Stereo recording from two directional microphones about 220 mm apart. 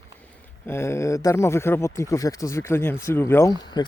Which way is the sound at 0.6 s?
10° left (ahead or behind).